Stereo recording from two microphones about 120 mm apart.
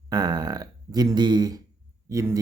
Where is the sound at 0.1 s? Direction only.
35° right (ahead or behind).